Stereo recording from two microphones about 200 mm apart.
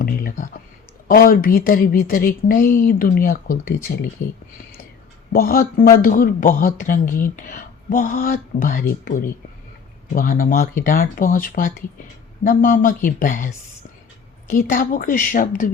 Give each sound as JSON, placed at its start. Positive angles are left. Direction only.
{"t": 0.0, "sound": "a sound", "side_deg": 45}
{"t": 1.0, "sound": "speech", "side_deg": 45}
{"t": 5.3, "sound": "speech", "side_deg": 45}
{"t": 14.5, "sound": "a woman's voice", "side_deg": 45}